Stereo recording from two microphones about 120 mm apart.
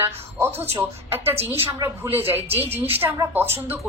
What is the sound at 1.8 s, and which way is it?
A woman's voice, 20° right (ahead or behind).